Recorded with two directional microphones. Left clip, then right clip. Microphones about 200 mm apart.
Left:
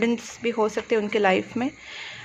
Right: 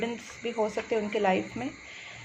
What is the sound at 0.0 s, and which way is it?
Speech, 45° left (ahead or behind).